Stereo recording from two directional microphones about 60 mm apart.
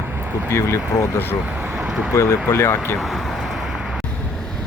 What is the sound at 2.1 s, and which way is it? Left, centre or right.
Speech, left.